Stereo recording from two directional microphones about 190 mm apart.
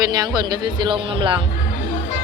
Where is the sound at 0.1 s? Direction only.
20° right (ahead or behind).